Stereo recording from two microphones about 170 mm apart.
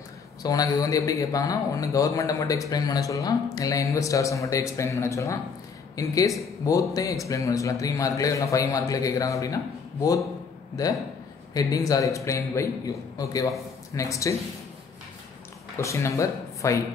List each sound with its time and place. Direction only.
0.4 s a man's voice: 20° left (ahead or behind)
11.5 s a man's voice: 20° left (ahead or behind)
15.8 s speech: 15° left (ahead or behind)